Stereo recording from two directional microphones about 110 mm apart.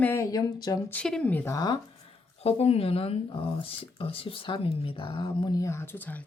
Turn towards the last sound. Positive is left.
turn(degrees=15)  # may be behind; listen again after turning